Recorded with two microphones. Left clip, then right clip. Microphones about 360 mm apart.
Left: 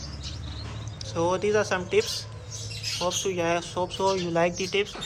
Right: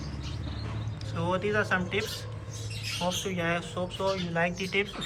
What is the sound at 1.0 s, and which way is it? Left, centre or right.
Speech, centre.